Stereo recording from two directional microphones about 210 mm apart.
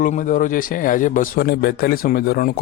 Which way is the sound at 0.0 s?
40° left (ahead or behind).